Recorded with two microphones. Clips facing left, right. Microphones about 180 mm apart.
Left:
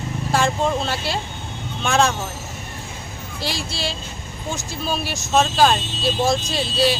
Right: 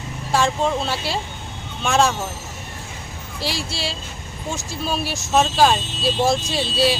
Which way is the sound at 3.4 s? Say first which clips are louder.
Even; centre (ahead or behind).